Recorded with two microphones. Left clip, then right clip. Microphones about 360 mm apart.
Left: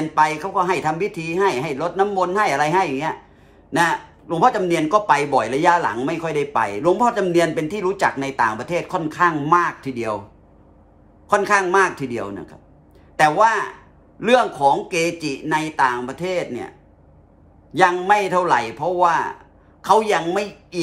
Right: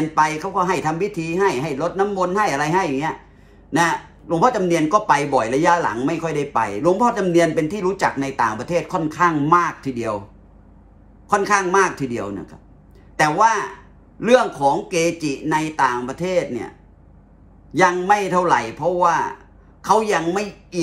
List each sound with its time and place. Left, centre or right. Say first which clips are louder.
0.1 s a man's voice: left 2 dB; centre
11.2 s speech: left 1 dB; centre
17.7 s a man's voice: even; centre